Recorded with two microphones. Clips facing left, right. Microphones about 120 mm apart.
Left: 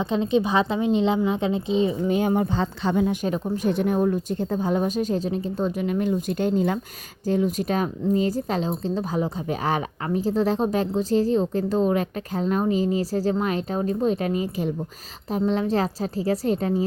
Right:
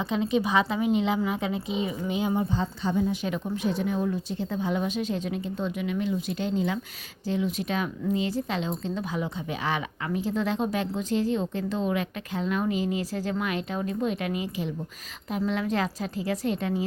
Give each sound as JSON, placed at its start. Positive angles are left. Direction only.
{"t": 0.0, "sound": "a woman's voice", "side_deg": 30}
{"t": 2.1, "sound": "a woman's voice", "side_deg": 55}
{"t": 3.2, "sound": "speech", "side_deg": 40}
{"t": 3.7, "sound": "speech", "side_deg": 55}